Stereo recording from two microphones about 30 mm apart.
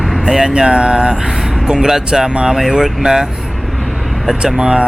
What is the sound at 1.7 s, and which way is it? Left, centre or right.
Speech, centre.